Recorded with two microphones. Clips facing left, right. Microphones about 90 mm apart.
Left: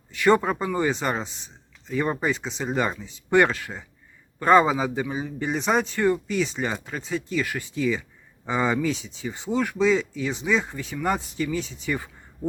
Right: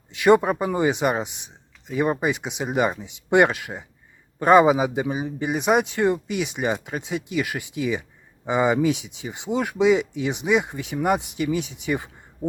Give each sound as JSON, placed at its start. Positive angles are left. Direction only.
{"t": 0.1, "sound": "a man's voice", "side_deg": -15}